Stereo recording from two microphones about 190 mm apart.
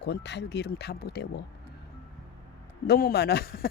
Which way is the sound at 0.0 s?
65° left (ahead or behind).